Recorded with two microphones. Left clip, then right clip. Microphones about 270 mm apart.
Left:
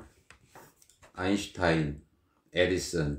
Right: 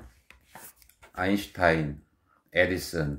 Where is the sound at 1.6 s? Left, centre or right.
Right.